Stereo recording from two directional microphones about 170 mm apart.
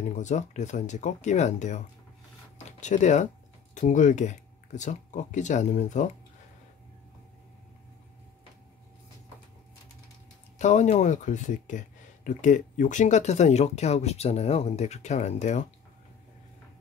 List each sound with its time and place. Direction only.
0.1 s speech: 45° left (ahead or behind)
2.8 s speech: 45° left (ahead or behind)
10.6 s speech: 45° left (ahead or behind)